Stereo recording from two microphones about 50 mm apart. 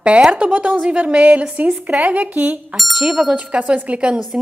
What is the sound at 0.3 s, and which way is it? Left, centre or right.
Speech, right.